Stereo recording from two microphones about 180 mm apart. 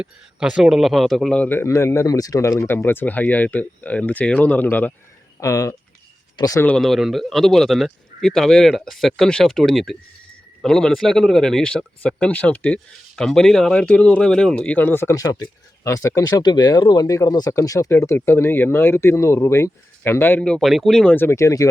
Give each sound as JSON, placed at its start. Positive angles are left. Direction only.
{"t": 0.0, "sound": "speech", "side_deg": -5}
{"t": 6.7, "sound": "speech", "side_deg": 0}